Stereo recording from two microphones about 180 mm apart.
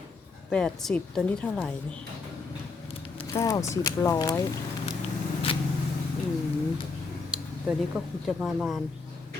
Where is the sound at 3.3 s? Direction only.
20° left (ahead or behind).